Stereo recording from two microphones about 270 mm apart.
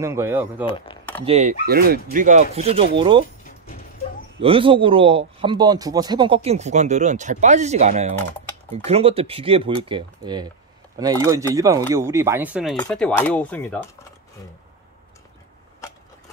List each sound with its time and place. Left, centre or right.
0.0 s speech: centre
0.7 s speech: centre
1.2 s a man's voice: right
1.7 s a man's voice: right; by 3.3 s centre
4.4 s a man's voice: centre